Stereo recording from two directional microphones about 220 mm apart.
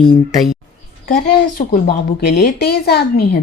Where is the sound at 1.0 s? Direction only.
40° left (ahead or behind).